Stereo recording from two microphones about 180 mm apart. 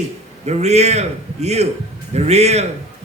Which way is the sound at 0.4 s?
40° right (ahead or behind).